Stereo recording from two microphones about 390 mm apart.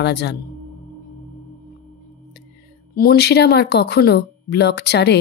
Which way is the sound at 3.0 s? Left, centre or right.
Left.